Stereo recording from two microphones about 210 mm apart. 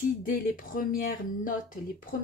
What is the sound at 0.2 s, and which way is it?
Speech, 40° left (ahead or behind).